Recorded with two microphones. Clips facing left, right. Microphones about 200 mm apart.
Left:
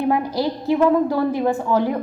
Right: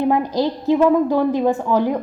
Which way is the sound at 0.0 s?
15° right (ahead or behind).